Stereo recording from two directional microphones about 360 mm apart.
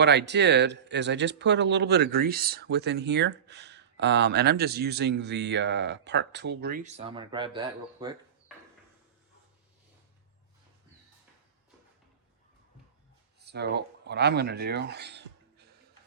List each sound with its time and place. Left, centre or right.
0.0 s speech: right; by 8.5 s centre
13.4 s speech: right